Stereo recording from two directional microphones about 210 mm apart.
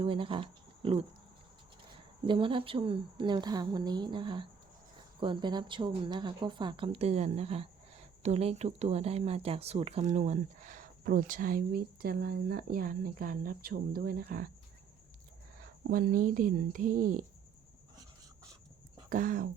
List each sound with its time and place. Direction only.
0.0 s speech: 25° right (ahead or behind)
2.2 s a woman's voice: 25° right (ahead or behind); by 14.5 s 45° right (ahead or behind)
15.5 s speech: 45° right (ahead or behind)
19.1 s speech: 40° right (ahead or behind)